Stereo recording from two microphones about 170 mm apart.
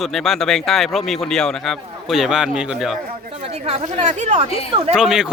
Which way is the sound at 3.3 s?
40° right (ahead or behind).